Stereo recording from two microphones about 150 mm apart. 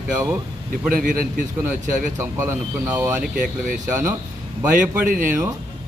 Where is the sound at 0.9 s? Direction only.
65° right (ahead or behind).